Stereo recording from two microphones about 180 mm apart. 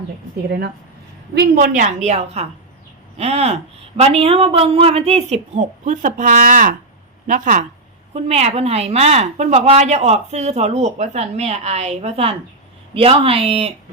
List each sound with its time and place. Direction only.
0.4 s speech: 65° right (ahead or behind)
1.4 s a woman's voice: 55° right (ahead or behind)
8.1 s a woman's voice: 35° right (ahead or behind)